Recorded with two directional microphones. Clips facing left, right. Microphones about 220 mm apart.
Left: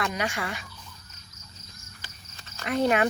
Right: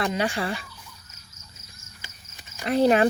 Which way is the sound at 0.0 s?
30° right (ahead or behind).